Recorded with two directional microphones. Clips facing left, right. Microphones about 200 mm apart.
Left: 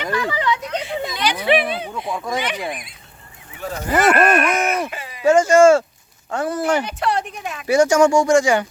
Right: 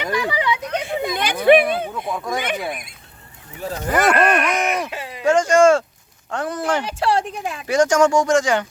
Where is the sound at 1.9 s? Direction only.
Centre (ahead or behind).